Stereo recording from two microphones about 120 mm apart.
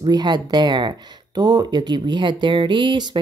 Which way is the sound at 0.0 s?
35° right (ahead or behind).